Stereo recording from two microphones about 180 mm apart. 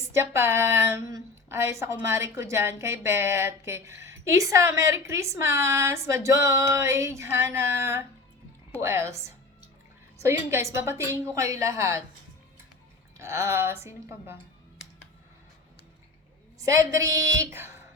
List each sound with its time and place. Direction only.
0.0 s speech: 15° right (ahead or behind)
13.1 s speech: 15° right (ahead or behind)
16.6 s speech: 15° right (ahead or behind)